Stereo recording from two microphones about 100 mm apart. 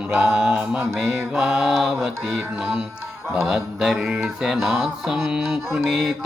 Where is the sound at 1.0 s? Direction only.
5° right (ahead or behind).